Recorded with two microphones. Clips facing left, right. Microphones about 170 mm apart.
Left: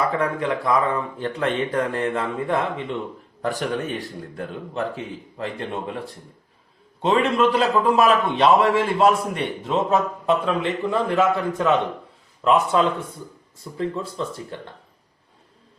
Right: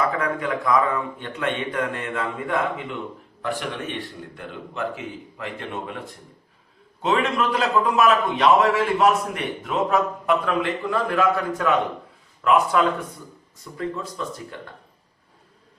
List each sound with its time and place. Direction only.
0.0 s speech: 30° left (ahead or behind)
7.0 s a man's voice: 30° left (ahead or behind)